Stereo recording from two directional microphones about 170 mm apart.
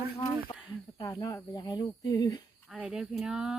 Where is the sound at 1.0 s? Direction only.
20° left (ahead or behind).